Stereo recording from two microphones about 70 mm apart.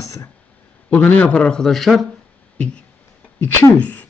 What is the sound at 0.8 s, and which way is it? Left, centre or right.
A man's voice, left.